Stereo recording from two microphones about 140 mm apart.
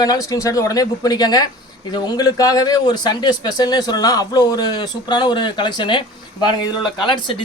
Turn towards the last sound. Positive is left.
turn(degrees=35)  # may be behind; listen again after turning